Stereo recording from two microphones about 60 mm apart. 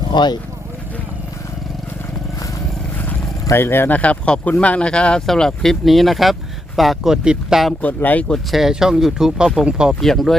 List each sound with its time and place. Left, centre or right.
3.5 s speech: left
3.9 s speech: left; by 7.6 s centre
7.8 s speech: left
8.4 s speech: centre
9.9 s speech: centre